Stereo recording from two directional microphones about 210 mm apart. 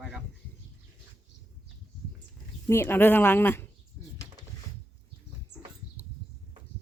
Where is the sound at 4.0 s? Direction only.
10° left (ahead or behind).